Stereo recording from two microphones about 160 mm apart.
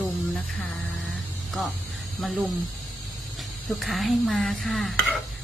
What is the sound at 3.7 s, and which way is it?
Speech, centre (ahead or behind).